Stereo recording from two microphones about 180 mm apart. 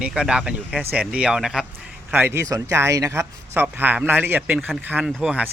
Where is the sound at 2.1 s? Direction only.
10° right (ahead or behind).